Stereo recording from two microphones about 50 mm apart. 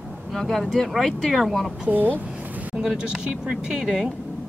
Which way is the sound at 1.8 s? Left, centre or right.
Right.